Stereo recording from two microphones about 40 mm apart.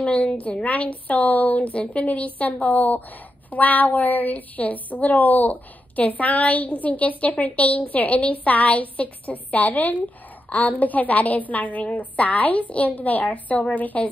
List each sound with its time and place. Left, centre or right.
0.0 s a woman's voice: left